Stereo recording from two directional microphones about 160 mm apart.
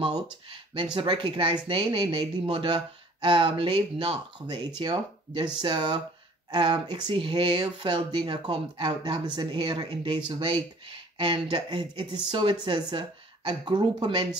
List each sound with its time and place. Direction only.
0.0 s speech: 30° right (ahead or behind)